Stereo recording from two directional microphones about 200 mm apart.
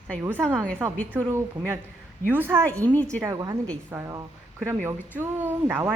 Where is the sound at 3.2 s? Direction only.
15° right (ahead or behind).